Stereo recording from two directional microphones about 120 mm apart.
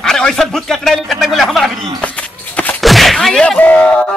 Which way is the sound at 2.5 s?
15° left (ahead or behind).